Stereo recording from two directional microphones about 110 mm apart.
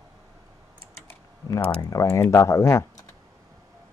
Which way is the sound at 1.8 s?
30° left (ahead or behind).